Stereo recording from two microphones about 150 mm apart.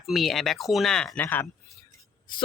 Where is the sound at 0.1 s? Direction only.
Centre (ahead or behind).